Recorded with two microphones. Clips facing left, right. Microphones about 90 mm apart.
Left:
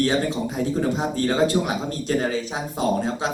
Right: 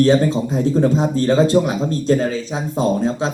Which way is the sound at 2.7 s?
30° right (ahead or behind).